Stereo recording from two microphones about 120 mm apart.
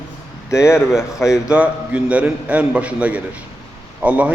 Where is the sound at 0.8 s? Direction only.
5° right (ahead or behind).